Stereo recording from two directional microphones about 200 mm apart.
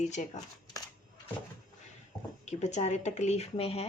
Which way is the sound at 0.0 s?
35° left (ahead or behind).